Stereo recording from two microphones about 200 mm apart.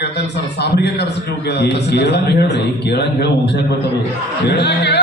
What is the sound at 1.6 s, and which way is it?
Speech, 60° left (ahead or behind).